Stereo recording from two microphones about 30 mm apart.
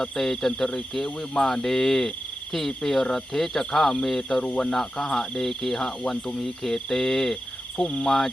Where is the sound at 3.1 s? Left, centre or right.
Centre.